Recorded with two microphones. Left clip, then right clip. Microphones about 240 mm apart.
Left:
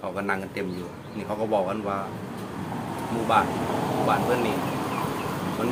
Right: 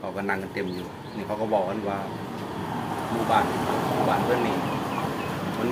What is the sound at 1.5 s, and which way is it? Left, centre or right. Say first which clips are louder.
Speech: even; centre.